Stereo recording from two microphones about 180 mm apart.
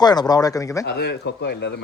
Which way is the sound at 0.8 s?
65° left (ahead or behind).